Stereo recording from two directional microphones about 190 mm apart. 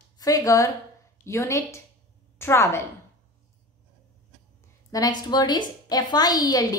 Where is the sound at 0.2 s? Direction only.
20° left (ahead or behind).